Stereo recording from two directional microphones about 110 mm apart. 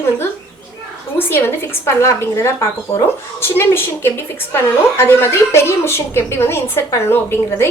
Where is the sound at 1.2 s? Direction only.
20° left (ahead or behind).